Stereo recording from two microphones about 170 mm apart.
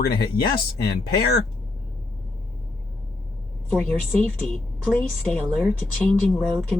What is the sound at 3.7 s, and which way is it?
A woman's voice, 5° left (ahead or behind).